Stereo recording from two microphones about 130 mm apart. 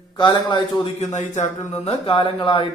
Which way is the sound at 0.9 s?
65° left (ahead or behind).